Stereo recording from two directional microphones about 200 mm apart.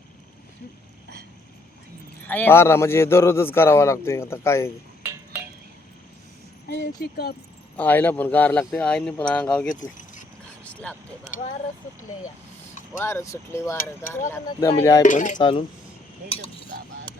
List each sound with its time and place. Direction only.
2.2 s a man's voice: 10° left (ahead or behind)
5.0 s a sound: 10° right (ahead or behind)
6.7 s speech: 55° left (ahead or behind)
7.8 s a man's voice: 10° left (ahead or behind)
9.8 s keys jangling: 40° left (ahead or behind)
10.6 s vehicle: 5° left (ahead or behind)
13.0 s a man's voice: 10° left (ahead or behind)
15.0 s speech: 40° left (ahead or behind)
15.4 s speech: 25° left (ahead or behind)